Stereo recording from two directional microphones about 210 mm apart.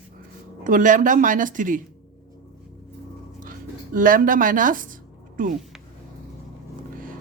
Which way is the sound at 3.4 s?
40° right (ahead or behind).